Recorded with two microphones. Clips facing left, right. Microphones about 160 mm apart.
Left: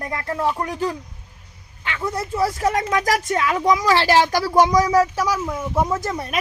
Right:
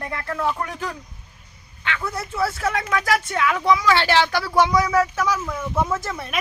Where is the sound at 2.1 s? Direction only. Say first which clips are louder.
Left 4 dB; 35° left (ahead or behind).